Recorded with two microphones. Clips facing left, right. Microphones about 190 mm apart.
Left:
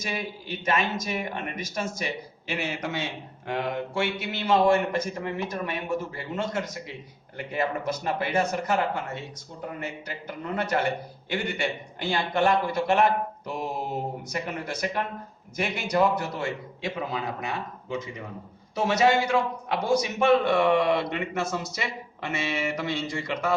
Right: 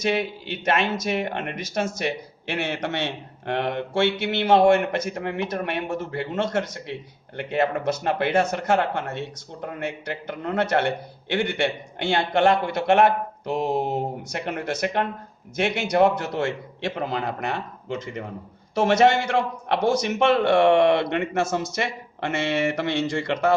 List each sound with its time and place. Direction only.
0.0 s speech: 70° right (ahead or behind)
9.6 s speech: 70° right (ahead or behind)
15.5 s speech: 75° right (ahead or behind)